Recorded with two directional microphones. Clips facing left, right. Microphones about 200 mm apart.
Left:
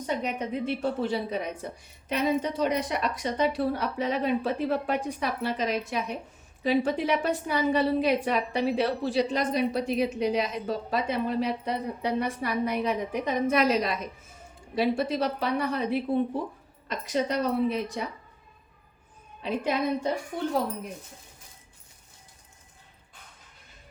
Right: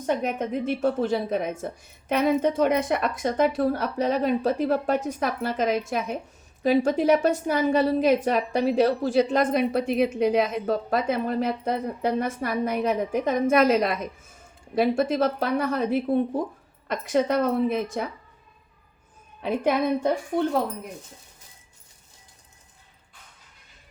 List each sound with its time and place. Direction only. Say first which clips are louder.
0.0 s a woman's voice: right 4 dB; 50° right (ahead or behind)
16.9 s a woman's voice: right 5 dB; 55° right (ahead or behind)
19.4 s a woman's voice: right 4 dB; 55° right (ahead or behind)